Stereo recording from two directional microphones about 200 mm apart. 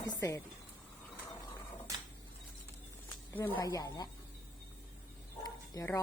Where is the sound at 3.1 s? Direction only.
10° left (ahead or behind).